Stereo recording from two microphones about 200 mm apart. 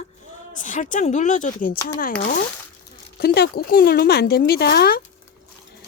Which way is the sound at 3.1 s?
50° left (ahead or behind).